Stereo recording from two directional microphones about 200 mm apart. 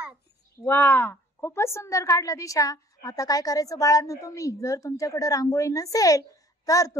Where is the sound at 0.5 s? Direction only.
15° left (ahead or behind).